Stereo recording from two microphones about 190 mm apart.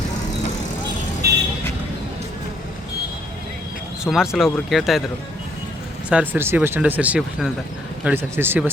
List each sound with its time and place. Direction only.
1.2 s vehicle: 55° right (ahead or behind)
4.0 s speech: centre (ahead or behind)
6.1 s speech: 10° right (ahead or behind)